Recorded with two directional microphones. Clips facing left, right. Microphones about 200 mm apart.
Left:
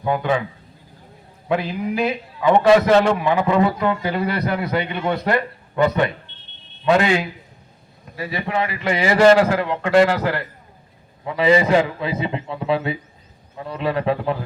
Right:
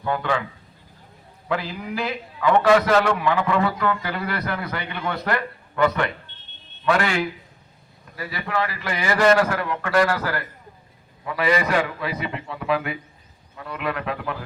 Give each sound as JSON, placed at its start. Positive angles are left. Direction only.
{"t": 0.0, "sound": "a man's voice", "side_deg": 20}
{"t": 1.5, "sound": "a man's voice", "side_deg": 20}